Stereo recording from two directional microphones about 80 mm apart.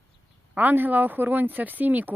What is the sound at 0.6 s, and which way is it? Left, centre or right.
A woman's voice, right.